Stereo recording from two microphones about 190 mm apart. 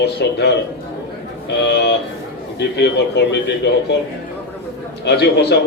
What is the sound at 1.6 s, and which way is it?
A man's voice, 60° left (ahead or behind).